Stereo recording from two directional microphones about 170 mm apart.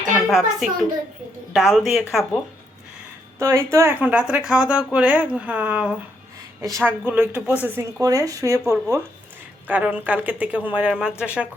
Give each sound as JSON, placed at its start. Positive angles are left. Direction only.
{"t": 0.3, "sound": "speech", "side_deg": 0}
{"t": 3.3, "sound": "speech", "side_deg": -15}
{"t": 6.6, "sound": "speech", "side_deg": -20}